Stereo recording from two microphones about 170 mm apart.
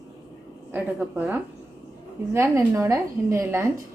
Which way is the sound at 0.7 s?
10° right (ahead or behind).